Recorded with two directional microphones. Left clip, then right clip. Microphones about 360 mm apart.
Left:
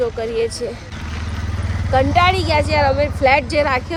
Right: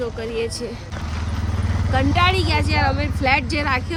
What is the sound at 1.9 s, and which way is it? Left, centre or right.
Speech, centre.